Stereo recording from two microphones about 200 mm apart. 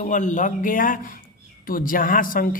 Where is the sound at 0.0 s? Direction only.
40° left (ahead or behind).